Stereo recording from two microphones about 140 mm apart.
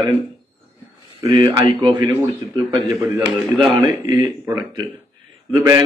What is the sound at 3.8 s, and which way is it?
Speech, 25° right (ahead or behind).